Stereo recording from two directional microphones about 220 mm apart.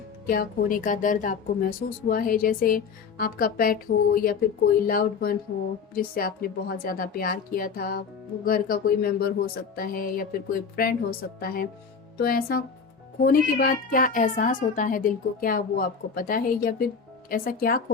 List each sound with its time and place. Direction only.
0.3 s a child's voice: 40° left (ahead or behind)